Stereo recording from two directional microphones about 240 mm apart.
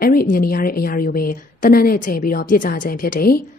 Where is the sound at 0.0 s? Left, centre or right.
Left.